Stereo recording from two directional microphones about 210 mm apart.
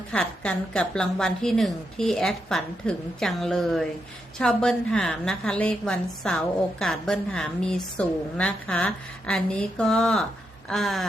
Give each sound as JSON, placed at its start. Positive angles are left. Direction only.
{"t": 0.1, "sound": "a woman's voice", "side_deg": 5}